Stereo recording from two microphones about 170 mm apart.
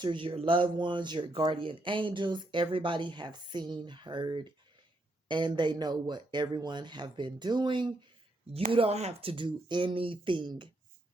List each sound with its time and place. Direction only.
0.0 s speech: 30° right (ahead or behind)